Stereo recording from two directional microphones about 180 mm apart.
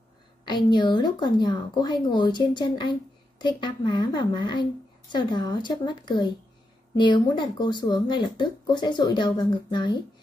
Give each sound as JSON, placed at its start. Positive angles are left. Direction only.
{"t": 0.7, "sound": "speech", "side_deg": 25}